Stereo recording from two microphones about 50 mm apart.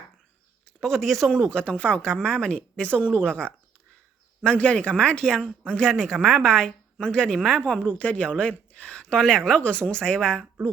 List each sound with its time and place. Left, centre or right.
0.8 s a woman's voice: centre
1.5 s a woman's voice: left